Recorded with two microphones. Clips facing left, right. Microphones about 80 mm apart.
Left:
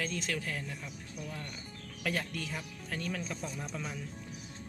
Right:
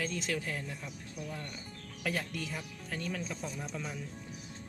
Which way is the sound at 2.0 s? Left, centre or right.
Centre.